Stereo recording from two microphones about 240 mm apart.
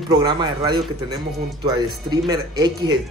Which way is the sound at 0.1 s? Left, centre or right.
Centre.